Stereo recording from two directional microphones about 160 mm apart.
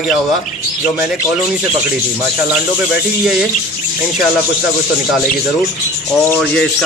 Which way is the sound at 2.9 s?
Centre (ahead or behind).